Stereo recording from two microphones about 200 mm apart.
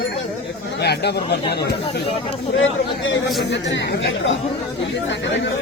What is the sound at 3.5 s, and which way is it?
Speech, 60° left (ahead or behind).